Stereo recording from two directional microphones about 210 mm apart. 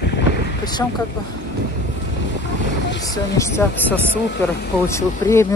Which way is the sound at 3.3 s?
10° left (ahead or behind).